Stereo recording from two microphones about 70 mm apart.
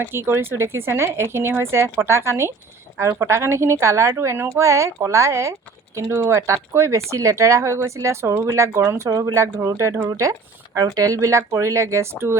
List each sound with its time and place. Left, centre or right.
0.1 s speech: right
9.0 s speech: right
10.8 s speech: right